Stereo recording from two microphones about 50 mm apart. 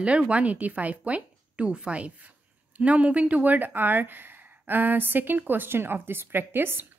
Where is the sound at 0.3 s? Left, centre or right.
Right.